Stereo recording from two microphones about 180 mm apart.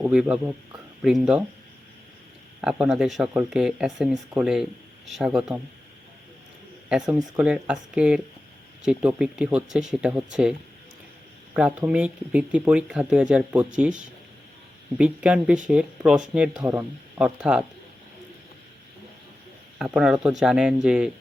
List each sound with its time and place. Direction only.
0.0 s speech: 5° right (ahead or behind)
2.6 s speech: 5° right (ahead or behind)
6.8 s speech: 5° right (ahead or behind)
11.5 s speech: 5° right (ahead or behind)
19.8 s speech: 5° right (ahead or behind)